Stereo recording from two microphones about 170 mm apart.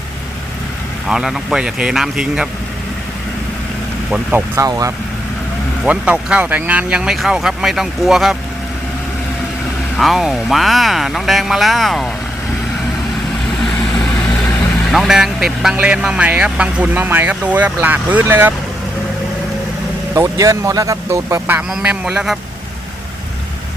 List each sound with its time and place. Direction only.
1.0 s speech: centre (ahead or behind)
4.1 s speech: 10° right (ahead or behind)
5.8 s speech: 5° right (ahead or behind)
10.0 s speech: centre (ahead or behind)
13.6 s vehicle: centre (ahead or behind)
14.8 s speech: centre (ahead or behind)
20.1 s speech: 20° right (ahead or behind); by 22.4 s 5° right (ahead or behind)